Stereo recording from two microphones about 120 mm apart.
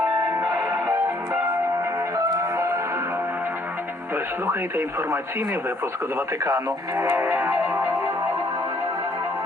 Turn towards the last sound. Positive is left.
turn(degrees=-15)  # may be behind; listen again after turning